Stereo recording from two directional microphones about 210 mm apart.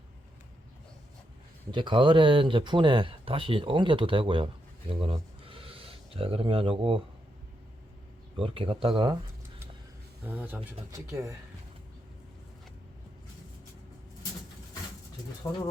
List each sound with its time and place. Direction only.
1.7 s speech: 25° right (ahead or behind)
8.4 s speech: 25° right (ahead or behind)
10.2 s speech: 10° right (ahead or behind)